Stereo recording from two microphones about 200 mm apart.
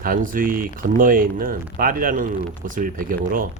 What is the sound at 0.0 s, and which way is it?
Speech, 45° right (ahead or behind).